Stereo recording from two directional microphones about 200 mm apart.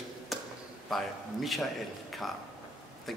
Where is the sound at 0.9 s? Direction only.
Centre (ahead or behind).